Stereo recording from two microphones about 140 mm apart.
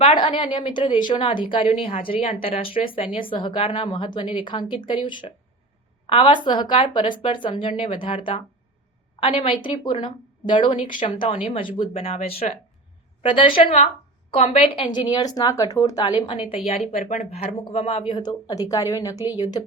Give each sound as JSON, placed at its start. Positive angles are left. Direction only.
{"t": 0.0, "sound": "a woman's voice", "side_deg": 35}
{"t": 16.6, "sound": "speech", "side_deg": 50}